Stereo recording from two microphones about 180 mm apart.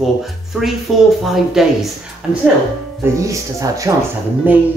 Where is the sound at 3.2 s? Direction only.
15° right (ahead or behind).